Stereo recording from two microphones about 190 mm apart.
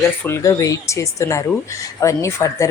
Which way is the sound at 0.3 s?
15° left (ahead or behind).